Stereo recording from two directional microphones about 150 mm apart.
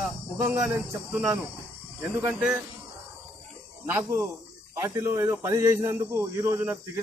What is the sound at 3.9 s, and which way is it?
A man's voice, 20° right (ahead or behind).